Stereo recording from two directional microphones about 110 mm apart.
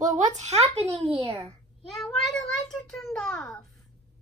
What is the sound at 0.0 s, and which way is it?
Speech, 90° right.